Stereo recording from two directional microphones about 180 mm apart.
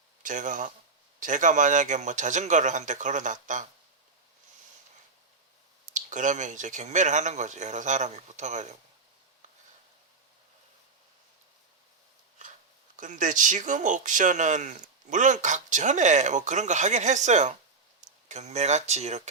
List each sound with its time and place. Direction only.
0.2 s speech: 45° right (ahead or behind)
5.9 s speech: 45° right (ahead or behind)
13.0 s speech: 45° right (ahead or behind)